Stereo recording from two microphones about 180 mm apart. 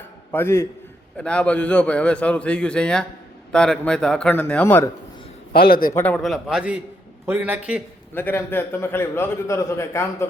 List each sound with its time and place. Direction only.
0.3 s a man's voice: 10° left (ahead or behind)
5.5 s a man's voice: 55° left (ahead or behind)
5.9 s a man's voice: 10° left (ahead or behind); by 7.8 s 10° right (ahead or behind)
8.1 s a man's voice: 10° left (ahead or behind)